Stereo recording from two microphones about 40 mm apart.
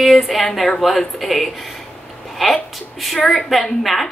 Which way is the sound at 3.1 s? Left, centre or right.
Left.